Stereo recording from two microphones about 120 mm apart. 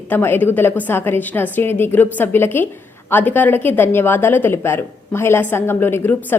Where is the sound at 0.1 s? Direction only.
15° left (ahead or behind).